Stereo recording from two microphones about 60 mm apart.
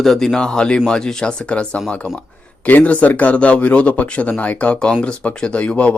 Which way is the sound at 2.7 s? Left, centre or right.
Left.